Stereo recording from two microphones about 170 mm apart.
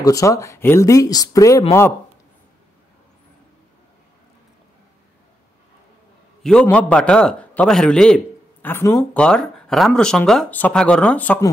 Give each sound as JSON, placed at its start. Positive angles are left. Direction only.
{"t": 0.0, "sound": "speech", "side_deg": 20}
{"t": 6.4, "sound": "speech", "side_deg": 5}
{"t": 8.6, "sound": "speech", "side_deg": 15}
{"t": 9.1, "sound": "speech", "side_deg": 5}